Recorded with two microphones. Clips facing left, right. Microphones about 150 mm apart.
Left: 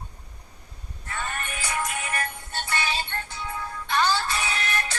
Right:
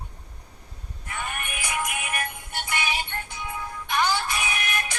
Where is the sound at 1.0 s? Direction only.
15° right (ahead or behind).